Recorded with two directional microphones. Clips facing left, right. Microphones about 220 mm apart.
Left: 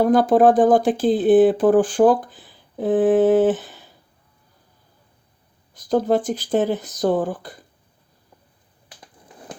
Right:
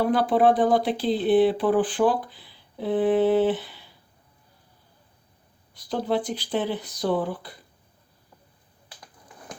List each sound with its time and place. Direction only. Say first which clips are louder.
0.0 s speech: left 6 dB; 45° left (ahead or behind)
5.7 s speech: left 7 dB; 45° left (ahead or behind)